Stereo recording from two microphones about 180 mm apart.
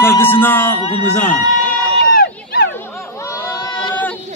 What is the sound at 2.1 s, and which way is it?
Run, 70° left (ahead or behind).